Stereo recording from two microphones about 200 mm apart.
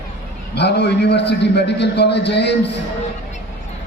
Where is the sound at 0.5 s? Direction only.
55° left (ahead or behind).